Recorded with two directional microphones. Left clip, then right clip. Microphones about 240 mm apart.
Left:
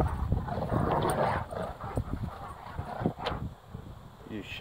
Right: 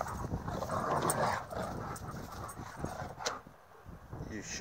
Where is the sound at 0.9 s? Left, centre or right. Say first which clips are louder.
Left 4 dB; centre.